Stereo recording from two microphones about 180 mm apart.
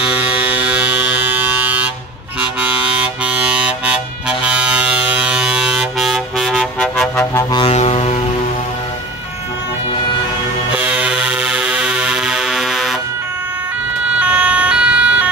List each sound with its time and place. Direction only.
0.1 s electric shaver: 10° right (ahead or behind)
3.6 s vehicle: 5° right (ahead or behind)
7.5 s vehicle: 35° left (ahead or behind)
10.7 s music: 5° right (ahead or behind)
14.1 s emergency vehicle: 5° right (ahead or behind)